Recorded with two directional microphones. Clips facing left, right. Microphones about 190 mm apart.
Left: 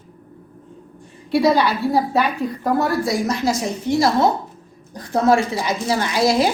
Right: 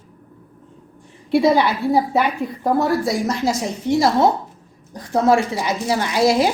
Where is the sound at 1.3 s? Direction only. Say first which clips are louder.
Right 1 dB; 25° right (ahead or behind).